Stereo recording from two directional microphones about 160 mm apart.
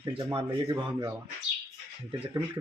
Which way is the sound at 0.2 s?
25° right (ahead or behind).